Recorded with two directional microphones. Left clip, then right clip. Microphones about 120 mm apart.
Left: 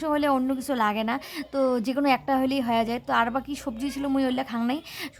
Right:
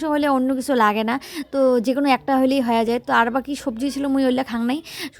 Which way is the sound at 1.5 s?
35° right (ahead or behind).